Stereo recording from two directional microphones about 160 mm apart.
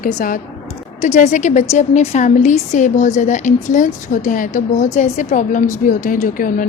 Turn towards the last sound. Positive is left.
turn(degrees=55)  # may be behind; listen again after turning